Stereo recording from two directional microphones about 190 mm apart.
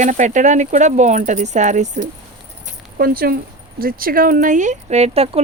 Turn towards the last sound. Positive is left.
turn(degrees=-35)  # may be behind; listen again after turning